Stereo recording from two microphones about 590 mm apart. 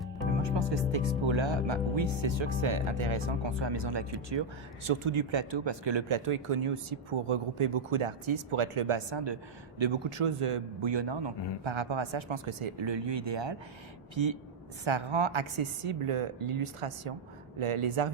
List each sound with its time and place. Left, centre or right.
0.9 s speech: right
14.8 s speech: right